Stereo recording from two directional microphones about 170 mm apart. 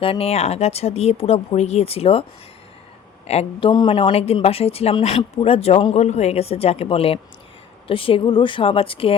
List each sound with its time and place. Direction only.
0.0 s a woman's voice: 35° left (ahead or behind)
3.2 s a woman's voice: 35° left (ahead or behind)